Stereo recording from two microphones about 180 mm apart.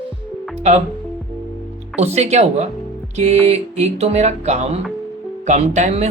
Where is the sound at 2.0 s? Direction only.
35° right (ahead or behind).